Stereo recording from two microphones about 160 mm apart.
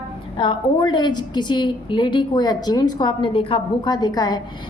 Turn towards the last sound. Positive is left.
turn(degrees=25)  # may be behind; listen again after turning